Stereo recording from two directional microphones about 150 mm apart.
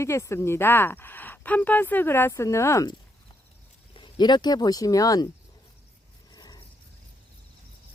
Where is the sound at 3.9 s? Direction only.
30° left (ahead or behind).